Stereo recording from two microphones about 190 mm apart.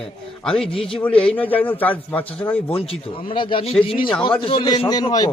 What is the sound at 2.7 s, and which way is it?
A man's voice, 30° left (ahead or behind).